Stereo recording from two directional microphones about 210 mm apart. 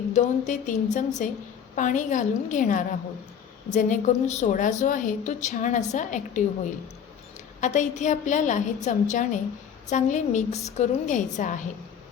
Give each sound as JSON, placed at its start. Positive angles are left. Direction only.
{"t": 0.1, "sound": "a woman's voice", "side_deg": 35}
{"t": 7.6, "sound": "a woman's voice", "side_deg": 35}